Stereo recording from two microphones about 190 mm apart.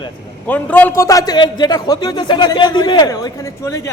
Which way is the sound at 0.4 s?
10° left (ahead or behind).